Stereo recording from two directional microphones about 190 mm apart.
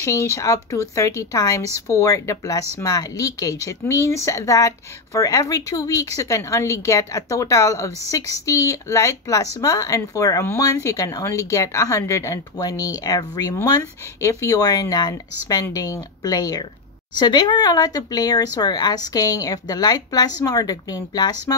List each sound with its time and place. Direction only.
0.0 s speech: 15° left (ahead or behind)